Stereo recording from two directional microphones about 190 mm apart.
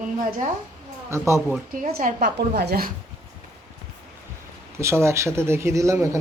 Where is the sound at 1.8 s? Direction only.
45° right (ahead or behind).